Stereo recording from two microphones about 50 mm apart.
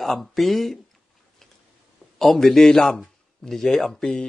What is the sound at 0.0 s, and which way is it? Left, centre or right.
Speech, centre.